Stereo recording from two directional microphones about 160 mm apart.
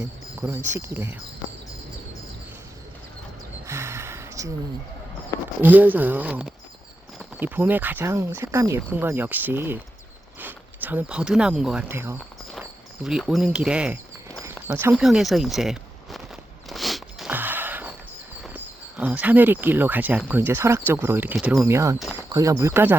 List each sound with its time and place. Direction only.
0.7 s speech: 15° right (ahead or behind)
3.7 s a sound: 15° right (ahead or behind)
5.6 s speech: 10° right (ahead or behind)
13.1 s speech: 5° right (ahead or behind)
14.9 s walk: centre (ahead or behind)
17.3 s a sound: 10° right (ahead or behind)
18.4 s speech: 10° right (ahead or behind)
21.6 s speech: 15° right (ahead or behind)